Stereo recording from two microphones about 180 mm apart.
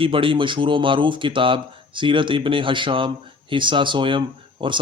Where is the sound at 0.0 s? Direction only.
30° right (ahead or behind).